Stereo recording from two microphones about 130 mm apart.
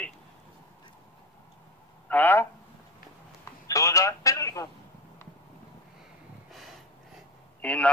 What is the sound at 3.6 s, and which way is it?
Telephone, 25° left (ahead or behind).